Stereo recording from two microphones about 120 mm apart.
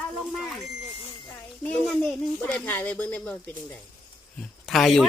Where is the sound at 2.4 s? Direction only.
10° left (ahead or behind).